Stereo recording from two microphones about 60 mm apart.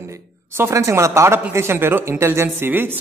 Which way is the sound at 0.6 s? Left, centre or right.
Right.